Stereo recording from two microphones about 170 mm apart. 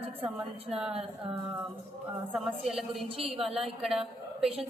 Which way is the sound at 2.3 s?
Centre (ahead or behind).